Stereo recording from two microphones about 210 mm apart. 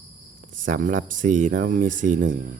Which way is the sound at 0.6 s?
40° right (ahead or behind).